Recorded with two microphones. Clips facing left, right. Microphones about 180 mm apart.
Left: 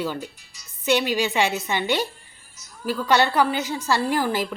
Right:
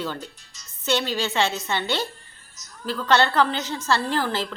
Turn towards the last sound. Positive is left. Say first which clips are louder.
# left 2 dB
turn(degrees=10)  # may be behind; listen again after turning